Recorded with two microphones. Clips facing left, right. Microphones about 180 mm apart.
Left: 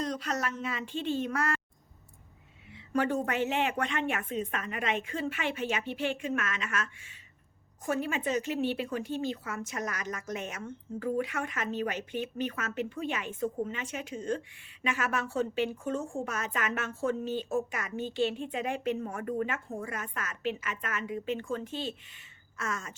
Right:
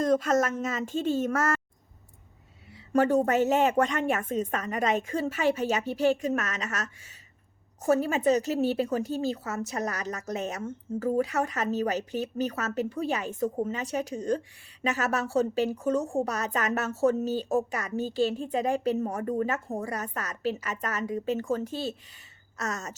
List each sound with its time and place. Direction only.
0.0 s speech: 50° right (ahead or behind)
2.7 s a woman's voice: 40° right (ahead or behind)